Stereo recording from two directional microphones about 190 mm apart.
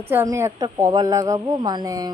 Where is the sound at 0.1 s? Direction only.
15° right (ahead or behind).